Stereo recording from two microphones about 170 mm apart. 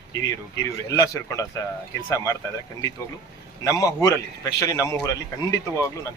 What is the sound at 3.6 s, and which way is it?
Speech, 20° left (ahead or behind).